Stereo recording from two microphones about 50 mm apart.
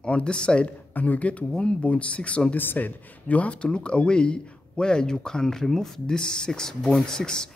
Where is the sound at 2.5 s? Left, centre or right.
Left.